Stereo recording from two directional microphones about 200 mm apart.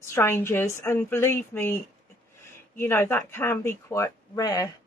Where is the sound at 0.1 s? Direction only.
15° left (ahead or behind).